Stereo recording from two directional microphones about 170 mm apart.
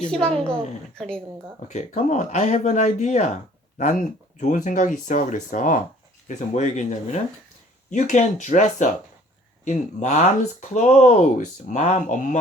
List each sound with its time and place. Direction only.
0.1 s a woman's voice: 5° left (ahead or behind)
1.6 s speech: 45° left (ahead or behind)
4.4 s speech: 45° left (ahead or behind)